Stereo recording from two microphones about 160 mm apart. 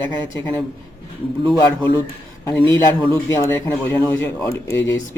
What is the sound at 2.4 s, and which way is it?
Speech, 15° left (ahead or behind).